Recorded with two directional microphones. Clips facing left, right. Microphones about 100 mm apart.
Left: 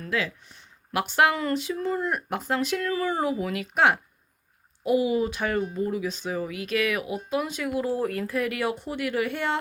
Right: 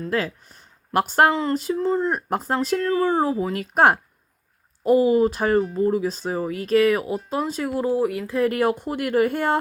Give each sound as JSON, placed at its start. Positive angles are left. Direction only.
{"t": 0.1, "sound": "speech", "side_deg": -40}
{"t": 1.3, "sound": "a sound", "side_deg": -25}
{"t": 1.7, "sound": "speech", "side_deg": -30}
{"t": 7.9, "sound": "speech", "side_deg": -15}
{"t": 8.4, "sound": "speech", "side_deg": -45}